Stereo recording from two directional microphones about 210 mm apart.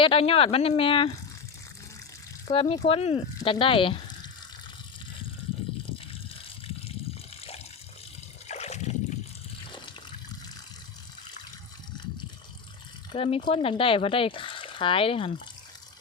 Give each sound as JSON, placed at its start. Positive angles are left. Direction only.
{"t": 0.0, "sound": "speech", "side_deg": 25}
{"t": 2.5, "sound": "speech", "side_deg": 30}
{"t": 6.7, "sound": "water", "side_deg": 30}
{"t": 13.1, "sound": "speech", "side_deg": 25}